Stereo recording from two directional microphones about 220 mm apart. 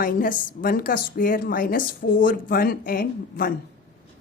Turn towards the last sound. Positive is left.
turn(degrees=40)  # may be behind; listen again after turning